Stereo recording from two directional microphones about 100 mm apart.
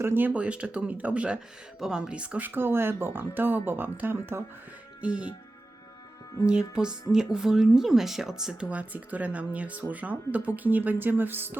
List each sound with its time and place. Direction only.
0.0 s speech: 20° right (ahead or behind)
4.9 s speech: 10° right (ahead or behind)
6.4 s speech: 10° right (ahead or behind)